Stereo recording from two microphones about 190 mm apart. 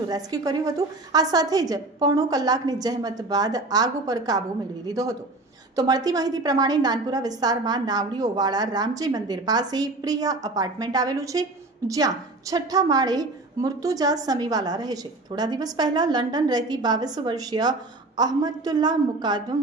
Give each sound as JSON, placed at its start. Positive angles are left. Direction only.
{"t": 0.1, "sound": "a woman's voice", "side_deg": -20}
{"t": 5.7, "sound": "a woman's voice", "side_deg": -20}